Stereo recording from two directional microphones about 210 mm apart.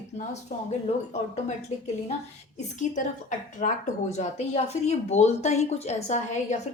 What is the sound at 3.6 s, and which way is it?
Speech, 35° left (ahead or behind).